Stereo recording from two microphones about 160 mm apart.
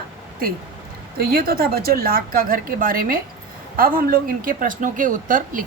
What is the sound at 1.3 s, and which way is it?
Speech, 65° right (ahead or behind).